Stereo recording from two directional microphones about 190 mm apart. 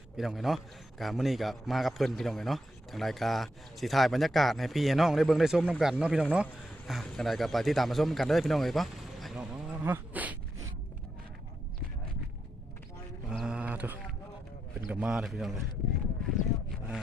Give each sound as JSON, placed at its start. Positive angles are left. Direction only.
{"t": 0.2, "sound": "a man's voice", "side_deg": 0}
{"t": 13.3, "sound": "a sound", "side_deg": -5}
{"t": 14.8, "sound": "a man's voice", "side_deg": -5}
{"t": 16.4, "sound": "speech", "side_deg": 40}